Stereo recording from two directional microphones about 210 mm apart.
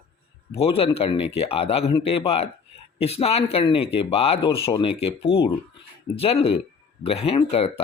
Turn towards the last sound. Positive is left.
turn(degrees=30)  # may be behind; listen again after turning